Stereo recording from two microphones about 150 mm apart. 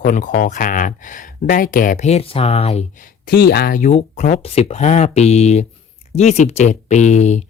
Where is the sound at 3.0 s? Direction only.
85° left.